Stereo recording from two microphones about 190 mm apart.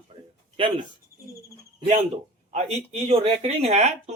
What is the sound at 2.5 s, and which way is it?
Speech, 35° right (ahead or behind).